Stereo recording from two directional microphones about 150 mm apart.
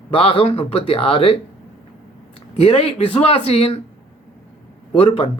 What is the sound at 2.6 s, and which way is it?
Speech, 40° left (ahead or behind).